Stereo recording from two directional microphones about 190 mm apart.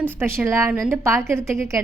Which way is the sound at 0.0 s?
10° right (ahead or behind).